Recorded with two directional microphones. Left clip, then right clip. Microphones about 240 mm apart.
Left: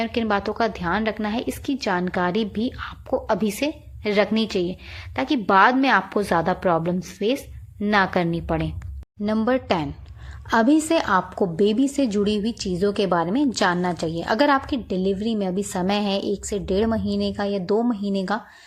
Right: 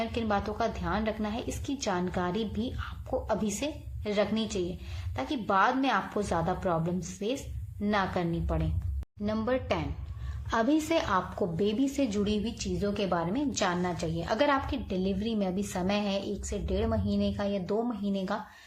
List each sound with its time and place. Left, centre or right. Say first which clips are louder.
0.0 s a woman's voice: left 7 dB; left